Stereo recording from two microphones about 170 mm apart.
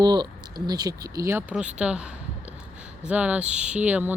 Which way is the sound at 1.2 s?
10° right (ahead or behind).